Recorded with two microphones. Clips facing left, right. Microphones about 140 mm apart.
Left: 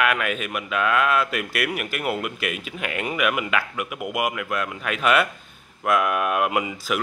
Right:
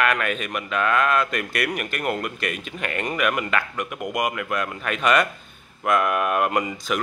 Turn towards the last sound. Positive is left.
turn(degrees=5)  # may be behind; listen again after turning